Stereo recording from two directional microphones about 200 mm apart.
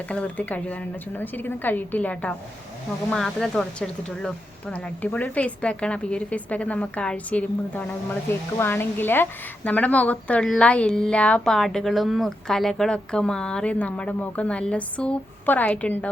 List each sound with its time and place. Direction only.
0.1 s a woman's voice: 5° left (ahead or behind)